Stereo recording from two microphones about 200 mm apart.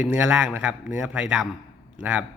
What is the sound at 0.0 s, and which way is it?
A man's voice, 5° right (ahead or behind).